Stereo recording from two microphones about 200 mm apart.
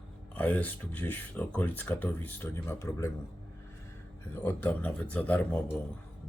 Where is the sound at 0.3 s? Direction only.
10° left (ahead or behind).